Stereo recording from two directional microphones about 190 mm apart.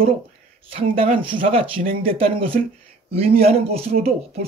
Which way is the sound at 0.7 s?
30° right (ahead or behind).